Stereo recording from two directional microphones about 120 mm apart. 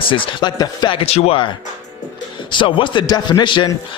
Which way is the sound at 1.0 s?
55° left (ahead or behind).